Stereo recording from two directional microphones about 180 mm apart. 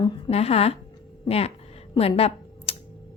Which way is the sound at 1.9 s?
35° left (ahead or behind).